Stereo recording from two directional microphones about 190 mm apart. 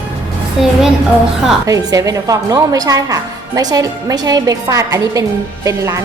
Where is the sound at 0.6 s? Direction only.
Centre (ahead or behind).